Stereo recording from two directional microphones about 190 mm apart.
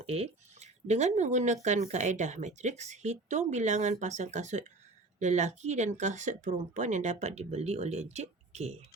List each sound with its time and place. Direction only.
0.0 s speech: 35° right (ahead or behind)